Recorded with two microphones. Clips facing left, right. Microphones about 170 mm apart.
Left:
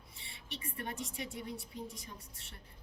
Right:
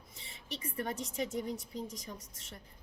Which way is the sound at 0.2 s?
40° right (ahead or behind).